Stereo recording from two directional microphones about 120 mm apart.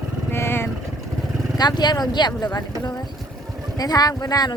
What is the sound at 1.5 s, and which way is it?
Speech, 35° left (ahead or behind).